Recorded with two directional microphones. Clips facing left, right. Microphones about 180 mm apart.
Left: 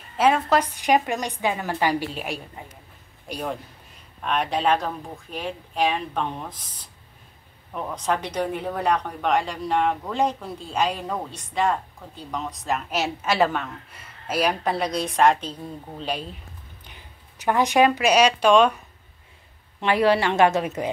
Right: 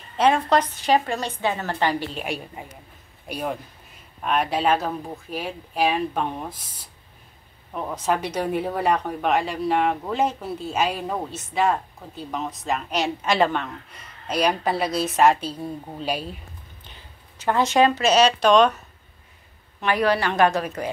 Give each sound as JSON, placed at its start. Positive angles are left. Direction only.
{"t": 0.2, "sound": "a woman's voice", "side_deg": 5}
{"t": 2.6, "sound": "speech", "side_deg": -10}
{"t": 16.8, "sound": "speech", "side_deg": 15}
{"t": 19.8, "sound": "a woman's voice", "side_deg": 25}